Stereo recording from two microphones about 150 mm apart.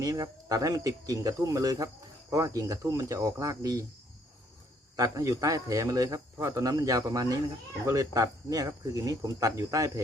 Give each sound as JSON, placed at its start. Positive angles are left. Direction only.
{"t": 0.0, "sound": "speech", "side_deg": -25}
{"t": 4.9, "sound": "speech", "side_deg": -25}